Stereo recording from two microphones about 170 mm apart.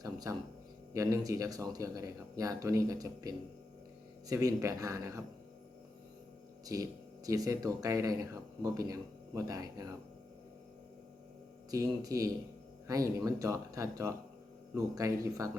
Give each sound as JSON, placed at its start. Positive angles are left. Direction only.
{"t": 0.0, "sound": "a sound", "side_deg": -20}
{"t": 0.9, "sound": "speech", "side_deg": -20}
{"t": 6.7, "sound": "speech", "side_deg": -20}
{"t": 11.7, "sound": "speech", "side_deg": -20}